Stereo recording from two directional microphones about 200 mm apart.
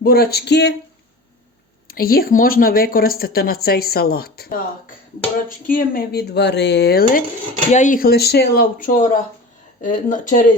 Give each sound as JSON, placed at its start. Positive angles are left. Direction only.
{"t": 0.0, "sound": "speech", "side_deg": 50}
{"t": 1.9, "sound": "speech", "side_deg": 50}
{"t": 5.6, "sound": "speech", "side_deg": 45}
{"t": 7.7, "sound": "speech", "side_deg": 40}